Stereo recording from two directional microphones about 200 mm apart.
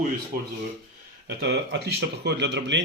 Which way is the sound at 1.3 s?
60° right (ahead or behind).